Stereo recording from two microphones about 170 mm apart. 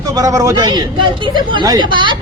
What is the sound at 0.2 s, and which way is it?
Speech, 20° right (ahead or behind).